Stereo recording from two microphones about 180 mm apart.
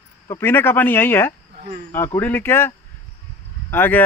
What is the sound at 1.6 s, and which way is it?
Speech, 55° right (ahead or behind).